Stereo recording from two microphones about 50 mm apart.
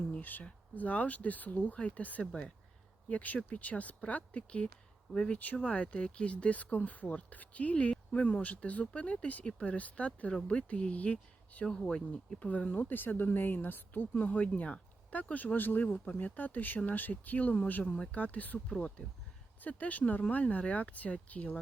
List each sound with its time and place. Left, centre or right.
0.2 s speech: left
11.6 s speech: centre; by 14.1 s left
14.1 s speech: left
17.9 s speech: centre
18.2 s speech: left